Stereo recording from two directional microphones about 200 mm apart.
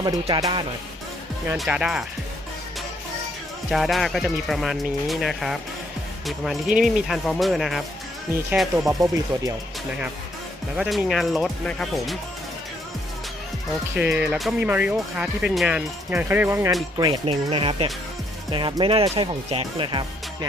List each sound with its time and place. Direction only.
0.0 s speech: 20° right (ahead or behind)
1.5 s speech: 5° right (ahead or behind)
3.7 s speech: centre (ahead or behind)
8.9 s speech: 15° right (ahead or behind)
10.8 s speech: centre (ahead or behind)
13.9 s speech: 10° right (ahead or behind)
17.0 s speech: 25° right (ahead or behind)